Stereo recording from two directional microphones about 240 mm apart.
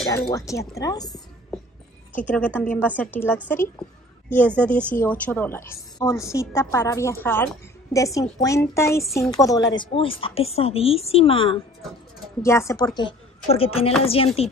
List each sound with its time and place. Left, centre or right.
0.3 s a woman's voice: centre
1.0 s a sound: centre
2.1 s a woman's voice: centre; by 11.6 s left
12.4 s a woman's voice: centre